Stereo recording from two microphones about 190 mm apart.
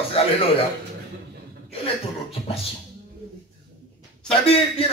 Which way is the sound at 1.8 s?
30° left (ahead or behind).